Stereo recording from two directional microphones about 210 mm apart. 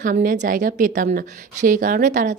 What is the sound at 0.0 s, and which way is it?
Speech, 40° right (ahead or behind).